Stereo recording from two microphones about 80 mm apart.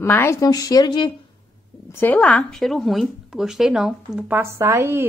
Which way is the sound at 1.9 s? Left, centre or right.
Left.